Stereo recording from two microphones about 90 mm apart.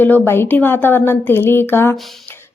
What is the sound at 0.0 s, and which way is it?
A woman's voice, 25° left (ahead or behind).